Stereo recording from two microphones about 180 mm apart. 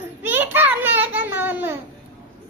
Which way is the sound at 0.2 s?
10° right (ahead or behind).